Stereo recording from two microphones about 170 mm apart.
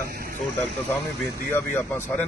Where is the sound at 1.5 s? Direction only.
10° left (ahead or behind).